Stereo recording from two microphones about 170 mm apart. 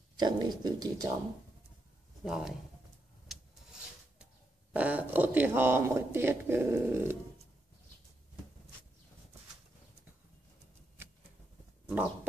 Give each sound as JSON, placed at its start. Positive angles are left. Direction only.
{"t": 0.2, "sound": "speech", "side_deg": -25}
{"t": 2.2, "sound": "speech", "side_deg": -5}
{"t": 4.7, "sound": "speech", "side_deg": -10}